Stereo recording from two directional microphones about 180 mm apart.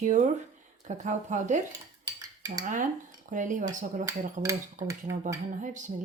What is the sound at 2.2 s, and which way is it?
Cutlery, 20° right (ahead or behind).